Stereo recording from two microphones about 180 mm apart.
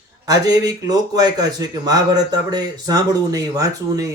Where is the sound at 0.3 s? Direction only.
20° right (ahead or behind).